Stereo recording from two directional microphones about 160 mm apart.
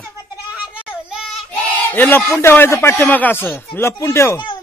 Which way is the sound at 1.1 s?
Centre (ahead or behind).